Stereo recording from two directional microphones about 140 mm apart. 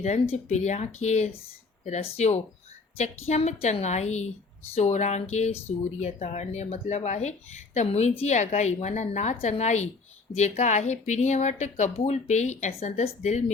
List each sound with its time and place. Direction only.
0.0 s a woman's voice: 55° left (ahead or behind)